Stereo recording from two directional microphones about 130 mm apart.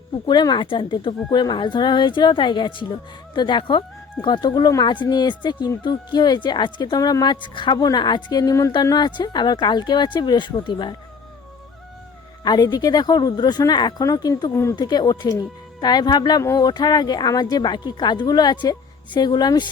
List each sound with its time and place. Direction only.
0.3 s speech: 35° left (ahead or behind)
12.5 s speech: 30° left (ahead or behind)
14.5 s speech: 20° left (ahead or behind)
14.8 s speech: 35° left (ahead or behind)